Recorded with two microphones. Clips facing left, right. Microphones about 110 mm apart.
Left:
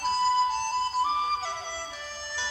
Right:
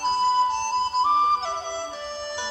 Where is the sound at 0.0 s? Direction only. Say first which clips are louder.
Right 3 dB; 25° right (ahead or behind).